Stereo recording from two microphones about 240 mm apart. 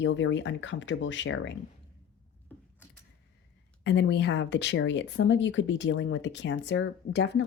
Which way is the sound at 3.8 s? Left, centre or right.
Left.